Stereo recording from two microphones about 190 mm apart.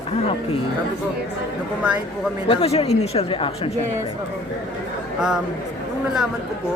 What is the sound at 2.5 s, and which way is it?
Speech, 30° left (ahead or behind).